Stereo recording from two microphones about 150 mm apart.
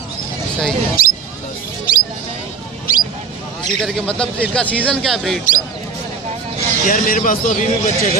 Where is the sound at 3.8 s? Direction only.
5° left (ahead or behind).